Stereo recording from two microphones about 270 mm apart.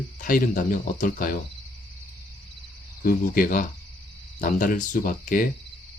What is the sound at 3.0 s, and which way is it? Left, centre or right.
Speech, left.